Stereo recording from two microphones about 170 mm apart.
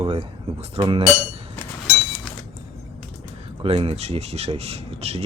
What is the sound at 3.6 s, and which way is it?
Speech, 35° right (ahead or behind).